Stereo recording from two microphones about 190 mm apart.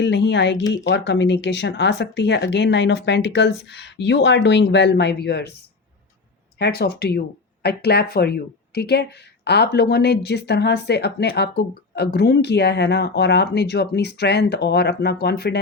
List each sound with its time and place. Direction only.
0.0 s speech: 65° left (ahead or behind)
6.6 s speech: 55° left (ahead or behind)